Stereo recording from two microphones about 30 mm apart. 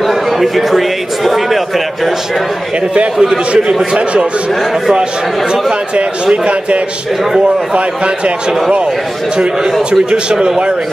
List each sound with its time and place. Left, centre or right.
0.1 s a man's voice: centre
3.2 s a man's voice: centre
6.2 s speech: right